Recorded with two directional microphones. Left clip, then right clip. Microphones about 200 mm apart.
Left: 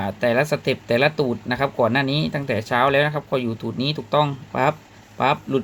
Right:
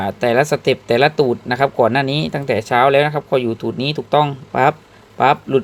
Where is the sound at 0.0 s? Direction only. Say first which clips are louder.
Right 5 dB; 20° right (ahead or behind).